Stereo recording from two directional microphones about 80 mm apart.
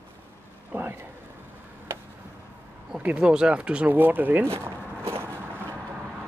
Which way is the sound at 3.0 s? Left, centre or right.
Centre.